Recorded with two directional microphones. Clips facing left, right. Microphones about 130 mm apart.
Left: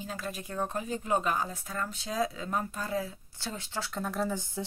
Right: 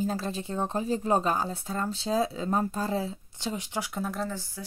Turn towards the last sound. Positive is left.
turn(degrees=20)  # may be behind; listen again after turning